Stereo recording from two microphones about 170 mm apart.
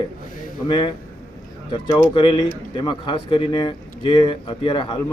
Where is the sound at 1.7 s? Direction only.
30° left (ahead or behind).